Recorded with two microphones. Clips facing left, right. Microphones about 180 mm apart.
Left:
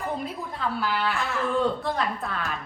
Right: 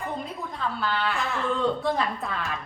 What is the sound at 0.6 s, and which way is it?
A woman's voice, 5° left (ahead or behind).